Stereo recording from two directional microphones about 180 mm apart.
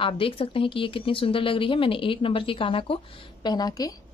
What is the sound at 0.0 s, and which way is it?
Speech, 30° left (ahead or behind).